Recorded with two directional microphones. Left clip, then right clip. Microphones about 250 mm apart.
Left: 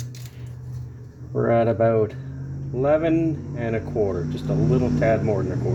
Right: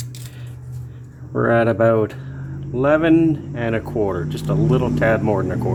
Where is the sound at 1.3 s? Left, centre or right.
Centre.